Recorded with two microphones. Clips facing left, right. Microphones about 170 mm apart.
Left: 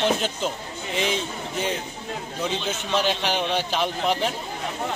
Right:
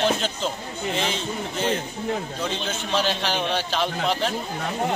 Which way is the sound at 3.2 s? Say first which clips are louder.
Left 1 dB; 15° left (ahead or behind).